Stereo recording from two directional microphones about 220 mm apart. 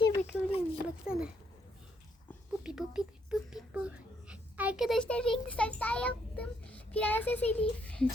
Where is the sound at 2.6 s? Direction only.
5° right (ahead or behind).